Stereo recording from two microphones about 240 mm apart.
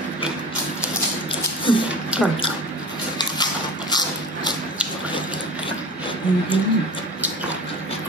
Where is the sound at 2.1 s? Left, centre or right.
Centre.